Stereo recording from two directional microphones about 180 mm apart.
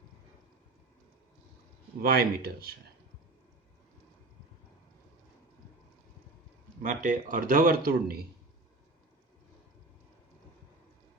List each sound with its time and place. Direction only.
2.0 s speech: 55° right (ahead or behind)
6.8 s a man's voice: 45° right (ahead or behind)